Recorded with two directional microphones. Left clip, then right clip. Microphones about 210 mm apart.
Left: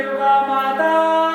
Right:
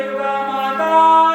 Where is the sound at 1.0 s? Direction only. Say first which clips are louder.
Right 9 dB; 20° right (ahead or behind).